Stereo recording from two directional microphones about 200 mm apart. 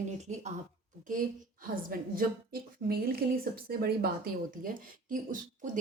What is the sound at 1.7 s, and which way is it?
A woman's voice, 45° right (ahead or behind).